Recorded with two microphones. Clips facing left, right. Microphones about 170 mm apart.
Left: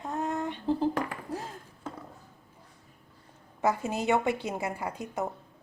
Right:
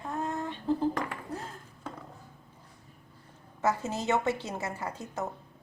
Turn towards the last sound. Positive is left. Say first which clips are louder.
# left 2 dB
turn(degrees=15)  # may be behind; listen again after turning